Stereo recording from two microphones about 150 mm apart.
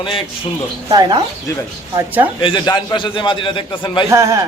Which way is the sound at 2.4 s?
30° left (ahead or behind).